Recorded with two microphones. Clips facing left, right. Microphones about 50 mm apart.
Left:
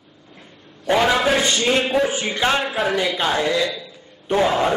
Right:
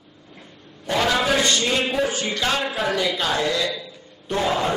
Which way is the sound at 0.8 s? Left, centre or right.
Centre.